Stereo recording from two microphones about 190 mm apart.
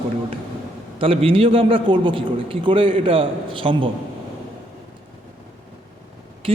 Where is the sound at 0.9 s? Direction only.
30° right (ahead or behind).